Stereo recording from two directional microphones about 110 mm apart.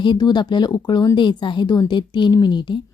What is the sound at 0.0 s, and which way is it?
Speech, 45° left (ahead or behind).